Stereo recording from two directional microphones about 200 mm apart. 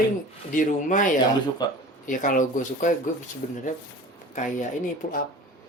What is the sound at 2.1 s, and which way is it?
Speech, 40° left (ahead or behind).